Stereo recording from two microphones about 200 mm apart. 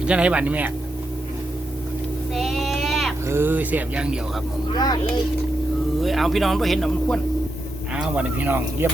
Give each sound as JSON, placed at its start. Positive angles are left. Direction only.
{"t": 0.0, "sound": "speech", "side_deg": -5}
{"t": 2.3, "sound": "sheep", "side_deg": 0}
{"t": 3.2, "sound": "speech", "side_deg": -10}
{"t": 4.7, "sound": "speech", "side_deg": 20}
{"t": 6.0, "sound": "speech", "side_deg": 0}